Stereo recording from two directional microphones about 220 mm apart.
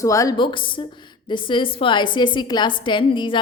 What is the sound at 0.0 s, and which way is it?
A woman's voice, 15° left (ahead or behind).